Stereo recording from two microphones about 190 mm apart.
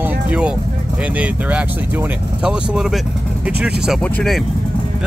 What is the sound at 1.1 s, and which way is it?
Speech, 5° right (ahead or behind).